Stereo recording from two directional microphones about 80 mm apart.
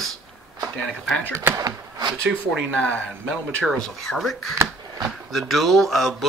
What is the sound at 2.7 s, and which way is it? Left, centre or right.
Speech, centre.